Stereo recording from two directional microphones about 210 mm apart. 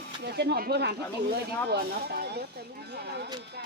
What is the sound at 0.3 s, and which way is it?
Speech, 50° right (ahead or behind).